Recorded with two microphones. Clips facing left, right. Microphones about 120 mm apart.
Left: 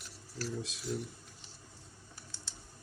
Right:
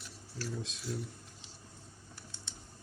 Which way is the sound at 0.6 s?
Centre (ahead or behind).